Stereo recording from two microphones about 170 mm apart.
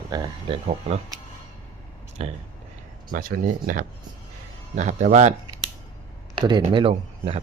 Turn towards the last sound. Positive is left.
turn(degrees=-30)  # may be behind; listen again after turning